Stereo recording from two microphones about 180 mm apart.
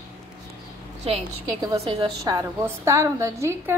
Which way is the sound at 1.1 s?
35° right (ahead or behind).